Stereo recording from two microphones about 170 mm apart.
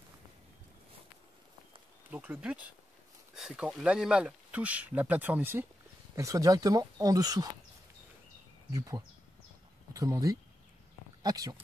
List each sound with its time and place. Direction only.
2.0 s speech: 10° right (ahead or behind)
8.7 s speech: 20° right (ahead or behind)